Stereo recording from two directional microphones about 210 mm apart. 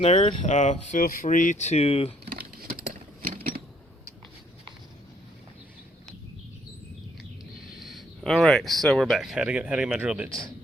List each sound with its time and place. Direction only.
0.0 s speech: 30° left (ahead or behind)
2.2 s a sound: 45° right (ahead or behind)
7.8 s speech: centre (ahead or behind)